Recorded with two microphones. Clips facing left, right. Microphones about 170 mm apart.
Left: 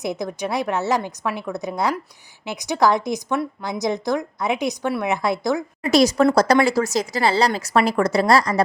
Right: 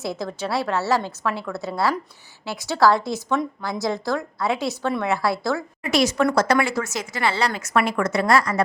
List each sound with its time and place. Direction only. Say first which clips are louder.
0.0 s a woman's voice: left 2 dB; 15° left (ahead or behind)
5.8 s speech: left 5 dB; 35° left (ahead or behind)